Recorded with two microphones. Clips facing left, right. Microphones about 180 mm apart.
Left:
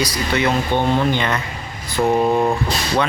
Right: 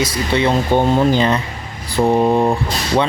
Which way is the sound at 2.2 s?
15° right (ahead or behind).